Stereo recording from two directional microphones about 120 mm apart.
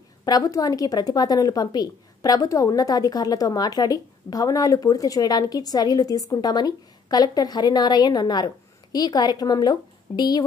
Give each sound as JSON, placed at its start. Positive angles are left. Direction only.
{"t": 0.2, "sound": "a woman's voice", "side_deg": 30}